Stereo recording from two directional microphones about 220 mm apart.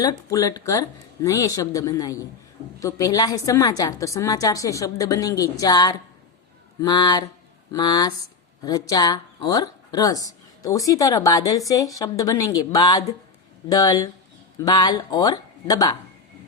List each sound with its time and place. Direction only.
0.0 s a woman's voice: 15° left (ahead or behind)